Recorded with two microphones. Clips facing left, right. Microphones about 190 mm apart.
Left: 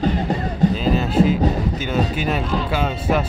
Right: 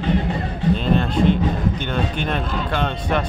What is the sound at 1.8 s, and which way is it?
Speech, 5° left (ahead or behind).